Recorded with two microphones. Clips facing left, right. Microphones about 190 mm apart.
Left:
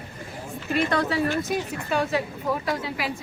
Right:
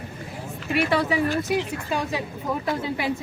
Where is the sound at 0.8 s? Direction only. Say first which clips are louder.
Right 2 dB; 10° right (ahead or behind).